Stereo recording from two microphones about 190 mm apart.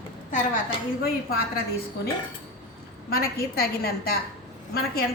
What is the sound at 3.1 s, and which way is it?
A woman's voice, 50° left (ahead or behind).